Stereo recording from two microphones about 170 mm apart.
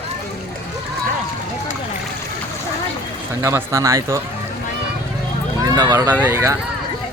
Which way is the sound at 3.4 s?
15° right (ahead or behind).